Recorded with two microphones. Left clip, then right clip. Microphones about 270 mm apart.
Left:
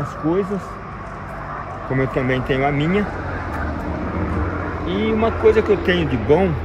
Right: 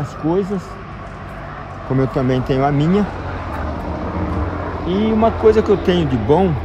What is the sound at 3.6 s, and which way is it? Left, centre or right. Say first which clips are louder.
Vehicle: right 1 dB; right.